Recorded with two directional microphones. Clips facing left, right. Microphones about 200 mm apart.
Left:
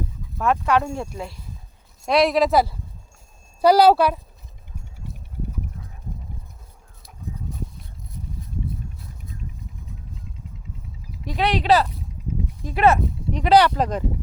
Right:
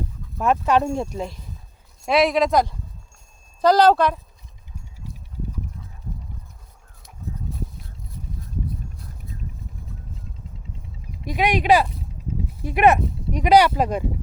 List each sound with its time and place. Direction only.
0.3 s speech: 20° right (ahead or behind)
2.0 s speech: centre (ahead or behind)
11.3 s speech: 15° right (ahead or behind)